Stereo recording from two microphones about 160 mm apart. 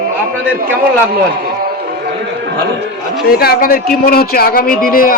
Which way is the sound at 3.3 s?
70° left (ahead or behind).